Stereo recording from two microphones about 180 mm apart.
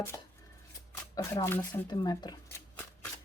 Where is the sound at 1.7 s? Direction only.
25° left (ahead or behind).